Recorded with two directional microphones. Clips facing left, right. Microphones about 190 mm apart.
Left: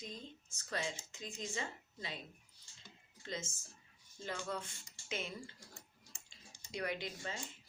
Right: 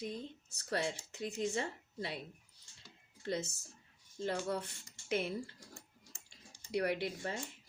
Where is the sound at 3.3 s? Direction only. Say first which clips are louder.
Right 7 dB; 65° right (ahead or behind).